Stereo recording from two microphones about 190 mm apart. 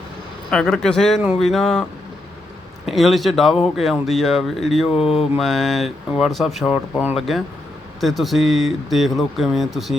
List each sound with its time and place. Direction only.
0.5 s speech: 5° left (ahead or behind)
4.9 s mantra: 30° left (ahead or behind)
5.4 s speech: centre (ahead or behind)